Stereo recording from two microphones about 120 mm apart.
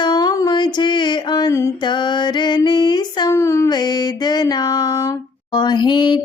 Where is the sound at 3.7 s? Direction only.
35° left (ahead or behind).